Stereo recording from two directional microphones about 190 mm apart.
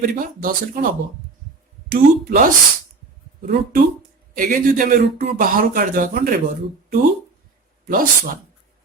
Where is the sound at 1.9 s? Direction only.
50° right (ahead or behind).